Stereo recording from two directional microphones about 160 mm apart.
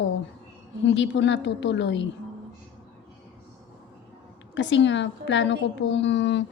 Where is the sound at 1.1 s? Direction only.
90° left.